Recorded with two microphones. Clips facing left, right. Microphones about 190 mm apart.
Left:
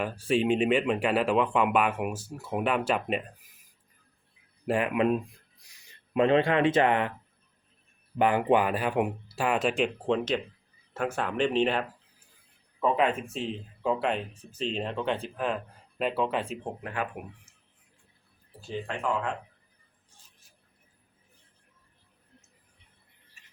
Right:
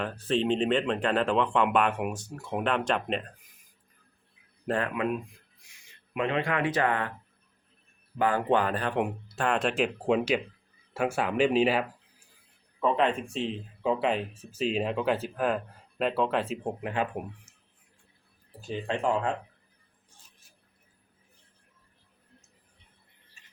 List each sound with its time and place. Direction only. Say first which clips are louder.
0.0 s speech: left 1 dB; 10° left (ahead or behind)
4.6 s speech: left 2 dB; 10° left (ahead or behind)
5.1 s speech: left 4 dB; 35° left (ahead or behind); by 7.1 s 20° left (ahead or behind)
8.2 s speech: left 2 dB; 15° left (ahead or behind); by 11.9 s 5° right (ahead or behind)
12.8 s speech: even; 5° left (ahead or behind)
16.8 s speech: right 3 dB; 25° right (ahead or behind)
18.6 s speech: right 3 dB; 25° right (ahead or behind)